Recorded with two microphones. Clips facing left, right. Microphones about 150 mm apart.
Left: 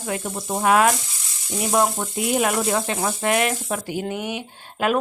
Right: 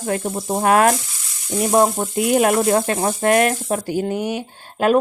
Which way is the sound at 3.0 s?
40° right (ahead or behind).